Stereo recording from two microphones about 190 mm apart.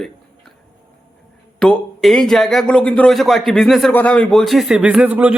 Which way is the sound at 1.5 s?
5° left (ahead or behind).